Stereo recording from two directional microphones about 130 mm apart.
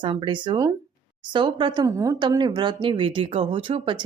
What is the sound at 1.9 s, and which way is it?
Speech, 25° right (ahead or behind).